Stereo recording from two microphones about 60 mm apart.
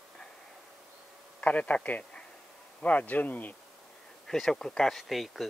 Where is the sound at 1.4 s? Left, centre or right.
Left.